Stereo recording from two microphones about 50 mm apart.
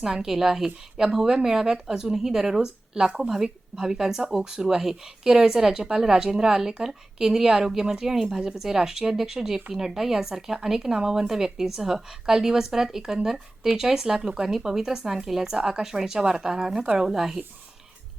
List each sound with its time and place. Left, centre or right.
0.0 s a woman's voice: centre